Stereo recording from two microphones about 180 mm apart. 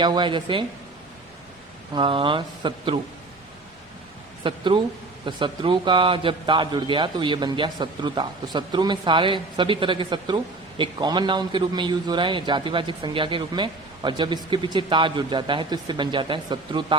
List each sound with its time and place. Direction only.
0.0 s a man's voice: 25° right (ahead or behind)
2.0 s a man's voice: 30° right (ahead or behind)
4.4 s a man's voice: 30° right (ahead or behind)